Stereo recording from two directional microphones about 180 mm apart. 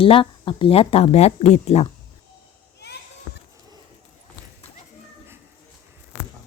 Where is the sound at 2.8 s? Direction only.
70° left (ahead or behind).